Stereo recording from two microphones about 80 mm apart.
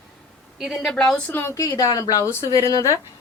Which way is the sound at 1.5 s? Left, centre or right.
Left.